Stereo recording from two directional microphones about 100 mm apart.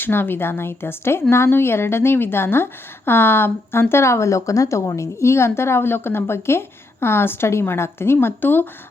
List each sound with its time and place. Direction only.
0.0 s speech: 20° left (ahead or behind)